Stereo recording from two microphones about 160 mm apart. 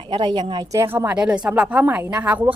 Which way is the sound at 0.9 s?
10° right (ahead or behind).